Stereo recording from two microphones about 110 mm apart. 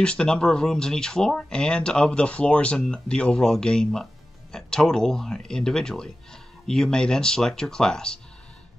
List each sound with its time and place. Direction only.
0.0 s speech: 10° left (ahead or behind)